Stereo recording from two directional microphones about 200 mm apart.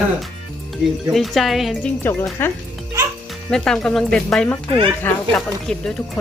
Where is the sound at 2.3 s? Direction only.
10° left (ahead or behind).